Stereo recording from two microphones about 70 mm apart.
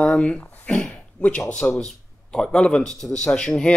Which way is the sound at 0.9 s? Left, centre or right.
Centre.